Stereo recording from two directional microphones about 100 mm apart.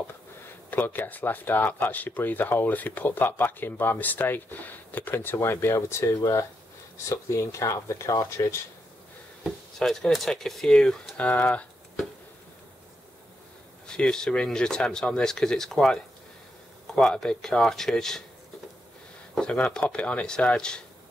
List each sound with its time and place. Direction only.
0.7 s speech: 15° left (ahead or behind)
7.1 s speech: 30° left (ahead or behind)
9.4 s speech: 5° left (ahead or behind)
13.8 s speech: 5° left (ahead or behind)
19.3 s speech: 10° left (ahead or behind)